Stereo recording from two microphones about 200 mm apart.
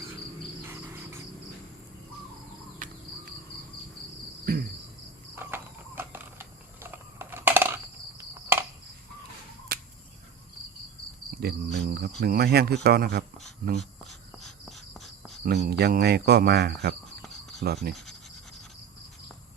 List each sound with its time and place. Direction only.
0.7 s cricket: 10° right (ahead or behind)
4.5 s cricket: 45° right (ahead or behind)
5.3 s cricket: 10° right (ahead or behind)
6.0 s a sound: 10° right (ahead or behind)
11.3 s cricket: 55° right (ahead or behind)
12.2 s speech: 50° right (ahead or behind)
13.7 s insect: centre (ahead or behind)
15.4 s speech: 50° right (ahead or behind)
17.9 s scratch: centre (ahead or behind)